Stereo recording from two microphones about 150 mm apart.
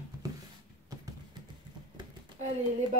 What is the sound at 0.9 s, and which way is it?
Clip-clop, 25° right (ahead or behind).